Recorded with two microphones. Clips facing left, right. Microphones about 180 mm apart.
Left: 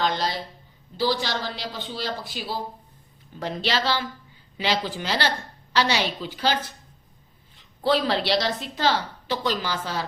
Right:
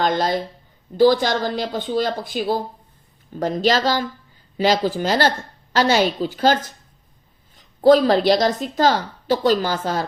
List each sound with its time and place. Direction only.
0.0 s a woman's voice: 50° right (ahead or behind)